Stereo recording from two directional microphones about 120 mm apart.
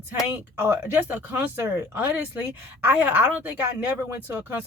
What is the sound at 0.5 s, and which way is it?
Speech, 20° right (ahead or behind).